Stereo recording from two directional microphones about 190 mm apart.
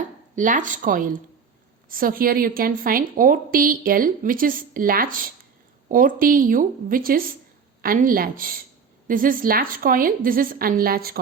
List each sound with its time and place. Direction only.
0.3 s a woman's voice: 45° right (ahead or behind)